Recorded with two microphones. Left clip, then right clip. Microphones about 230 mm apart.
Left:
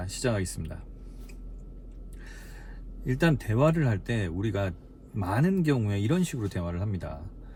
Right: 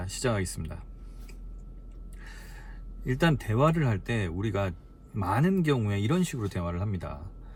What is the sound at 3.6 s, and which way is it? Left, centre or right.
Speech, centre.